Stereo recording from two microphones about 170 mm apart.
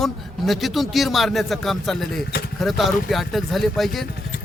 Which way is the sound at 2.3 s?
65° left (ahead or behind).